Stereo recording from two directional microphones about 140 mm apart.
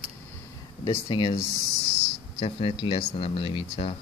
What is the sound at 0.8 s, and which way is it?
Speech, 35° left (ahead or behind).